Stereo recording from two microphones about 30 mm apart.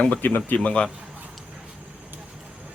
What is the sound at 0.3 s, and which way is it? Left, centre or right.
Speech, left.